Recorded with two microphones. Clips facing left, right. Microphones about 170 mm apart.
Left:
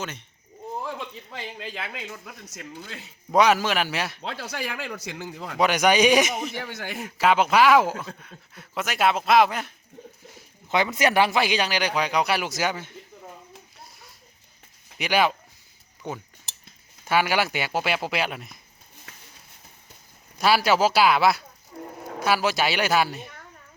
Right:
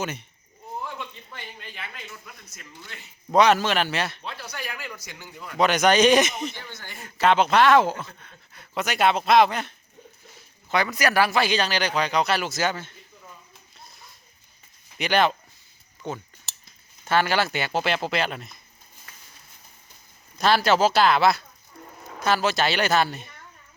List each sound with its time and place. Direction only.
0.0 s speech: 10° right (ahead or behind)
1.3 s speech: 90° left
3.3 s speech: 10° left (ahead or behind)
4.2 s a man's voice: 90° left
5.5 s speech: 10° left (ahead or behind)
6.6 s speech: 70° left (ahead or behind)
7.0 s speech: 5° left (ahead or behind)
10.7 s speech: 20° left (ahead or behind)
14.9 s speech: 5° left (ahead or behind)
20.4 s speech: 10° left (ahead or behind)